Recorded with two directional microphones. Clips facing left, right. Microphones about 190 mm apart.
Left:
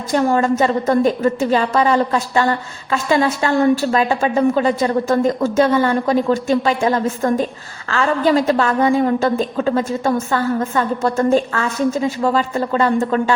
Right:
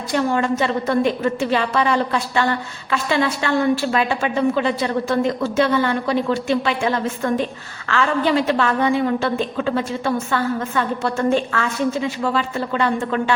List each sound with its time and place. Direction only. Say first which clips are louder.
0.1 s a woman's voice: left 4 dB; 40° left (ahead or behind)